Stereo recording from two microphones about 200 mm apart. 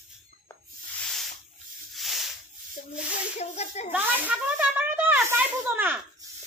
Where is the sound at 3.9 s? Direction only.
10° right (ahead or behind).